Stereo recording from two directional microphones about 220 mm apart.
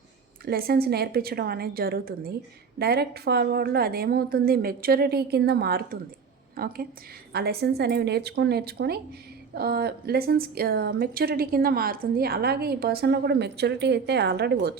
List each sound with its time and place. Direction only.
0.4 s a woman's voice: 45° right (ahead or behind)